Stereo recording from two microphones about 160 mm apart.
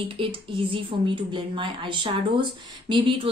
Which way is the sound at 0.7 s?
30° right (ahead or behind).